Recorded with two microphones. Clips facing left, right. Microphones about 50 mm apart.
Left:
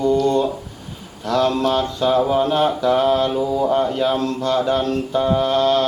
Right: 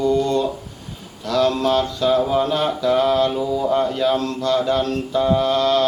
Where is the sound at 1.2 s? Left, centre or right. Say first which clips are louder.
Even; left.